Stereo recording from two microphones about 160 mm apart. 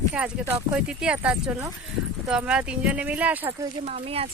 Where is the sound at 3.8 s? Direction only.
40° right (ahead or behind).